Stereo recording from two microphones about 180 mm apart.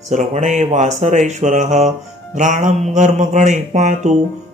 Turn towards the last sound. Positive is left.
turn(degrees=-45)  # may be behind; listen again after turning